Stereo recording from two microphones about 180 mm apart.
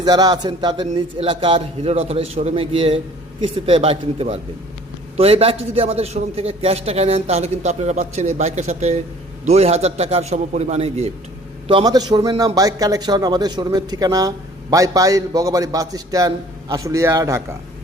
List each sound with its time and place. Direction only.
0.0 s a man's voice: 20° right (ahead or behind)
11.7 s a man's voice: 20° right (ahead or behind)